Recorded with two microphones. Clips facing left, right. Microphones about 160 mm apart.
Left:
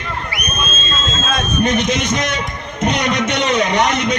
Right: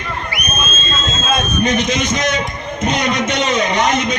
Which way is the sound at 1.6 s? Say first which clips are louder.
Left 2 dB; 60° left (ahead or behind).